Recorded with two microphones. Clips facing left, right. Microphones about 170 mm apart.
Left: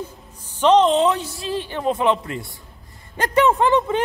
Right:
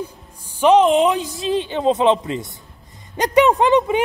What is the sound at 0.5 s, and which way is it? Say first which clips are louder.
Speech: right 2 dB; 10° right (ahead or behind).